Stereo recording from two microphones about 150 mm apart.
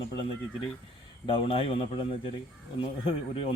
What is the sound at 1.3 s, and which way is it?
Speech, 40° left (ahead or behind).